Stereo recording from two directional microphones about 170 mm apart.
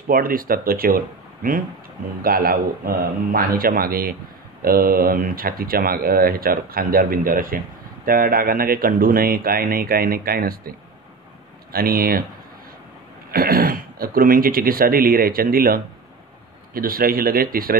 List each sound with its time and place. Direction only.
0.1 s speech: 55° right (ahead or behind)
11.7 s speech: 60° right (ahead or behind)
13.3 s speech: 60° right (ahead or behind)